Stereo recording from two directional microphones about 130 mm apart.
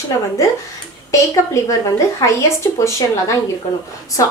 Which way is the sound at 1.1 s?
25° left (ahead or behind).